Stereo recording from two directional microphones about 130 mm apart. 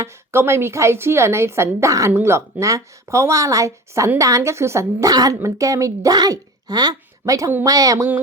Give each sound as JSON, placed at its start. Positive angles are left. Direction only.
{"t": 0.0, "sound": "a woman's voice", "side_deg": -20}